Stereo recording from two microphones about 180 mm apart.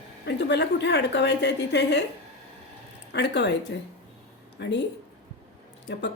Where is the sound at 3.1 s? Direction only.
70° left (ahead or behind).